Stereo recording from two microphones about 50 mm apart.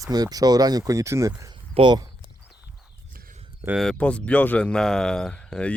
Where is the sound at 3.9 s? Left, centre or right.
Left.